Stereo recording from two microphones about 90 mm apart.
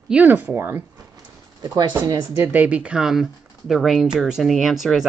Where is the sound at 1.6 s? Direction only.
50° right (ahead or behind).